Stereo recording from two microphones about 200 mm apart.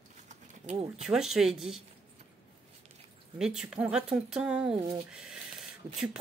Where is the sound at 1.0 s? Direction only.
5° right (ahead or behind).